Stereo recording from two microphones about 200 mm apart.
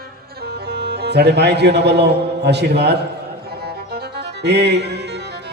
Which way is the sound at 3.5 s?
50° right (ahead or behind).